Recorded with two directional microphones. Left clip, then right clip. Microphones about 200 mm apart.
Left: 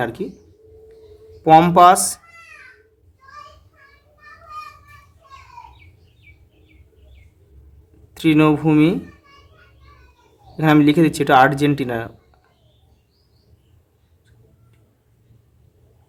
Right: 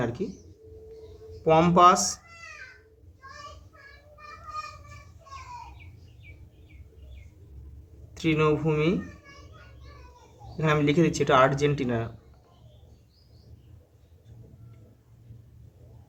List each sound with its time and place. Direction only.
0.0 s speech: 45° left (ahead or behind)
1.5 s speech: 45° left (ahead or behind)
8.1 s speech: 45° left (ahead or behind)
10.6 s speech: 45° left (ahead or behind)